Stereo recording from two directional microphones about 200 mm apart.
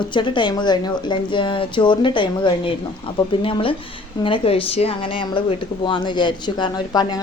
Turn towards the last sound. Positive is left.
turn(degrees=20)  # may be behind; listen again after turning